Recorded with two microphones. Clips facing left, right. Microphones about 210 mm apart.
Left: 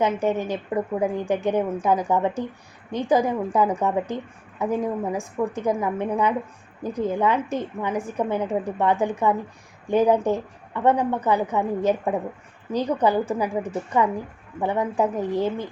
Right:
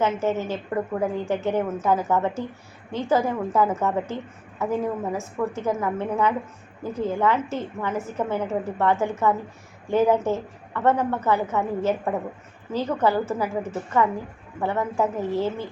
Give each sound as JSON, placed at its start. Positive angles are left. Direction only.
{"t": 0.0, "sound": "a woman's voice", "side_deg": 15}